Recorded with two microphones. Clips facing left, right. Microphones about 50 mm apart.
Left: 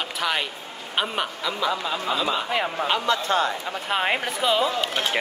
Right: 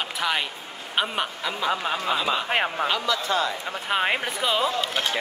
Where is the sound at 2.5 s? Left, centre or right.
Right.